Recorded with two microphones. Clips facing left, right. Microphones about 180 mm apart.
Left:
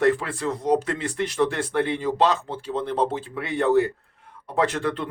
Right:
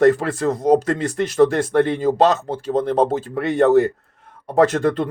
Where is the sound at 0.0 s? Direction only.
40° right (ahead or behind).